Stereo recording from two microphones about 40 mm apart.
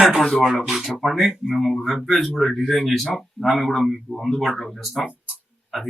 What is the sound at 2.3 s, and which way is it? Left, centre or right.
Speech, centre.